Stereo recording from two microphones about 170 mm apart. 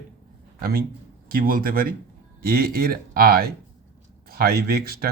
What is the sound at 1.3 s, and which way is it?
Speech, 60° right (ahead or behind).